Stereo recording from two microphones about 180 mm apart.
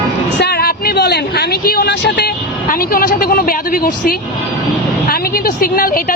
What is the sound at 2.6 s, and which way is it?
Speech, 50° left (ahead or behind).